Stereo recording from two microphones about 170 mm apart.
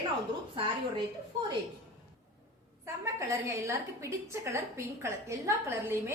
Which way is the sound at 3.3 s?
15° right (ahead or behind).